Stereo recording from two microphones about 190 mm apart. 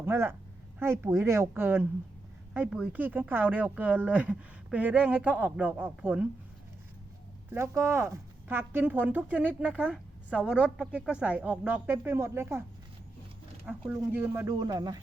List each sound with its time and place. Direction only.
0.0 s speech: 15° right (ahead or behind)
7.5 s speech: 15° right (ahead or behind)
13.9 s speech: 10° right (ahead or behind)